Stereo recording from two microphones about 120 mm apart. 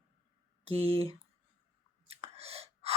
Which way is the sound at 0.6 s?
55° right (ahead or behind).